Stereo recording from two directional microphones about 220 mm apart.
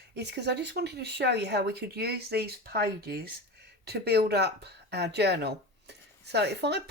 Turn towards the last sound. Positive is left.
turn(degrees=-50)  # may be behind; listen again after turning